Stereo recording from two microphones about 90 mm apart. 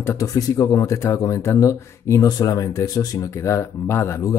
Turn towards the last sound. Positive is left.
turn(degrees=35)  # may be behind; listen again after turning